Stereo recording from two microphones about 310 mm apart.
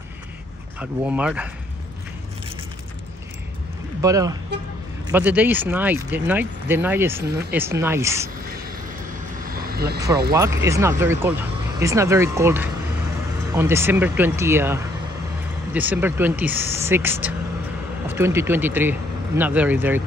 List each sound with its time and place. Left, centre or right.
0.7 s speech: centre
4.0 s speech: centre
9.4 s vehicle: right
10.3 s speech: centre